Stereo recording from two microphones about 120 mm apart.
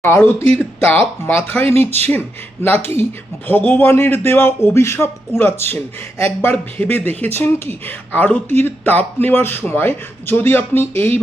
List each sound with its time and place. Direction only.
0.0 s a man's voice: 20° left (ahead or behind)